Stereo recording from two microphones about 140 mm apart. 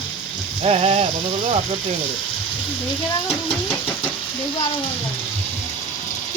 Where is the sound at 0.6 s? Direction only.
45° right (ahead or behind).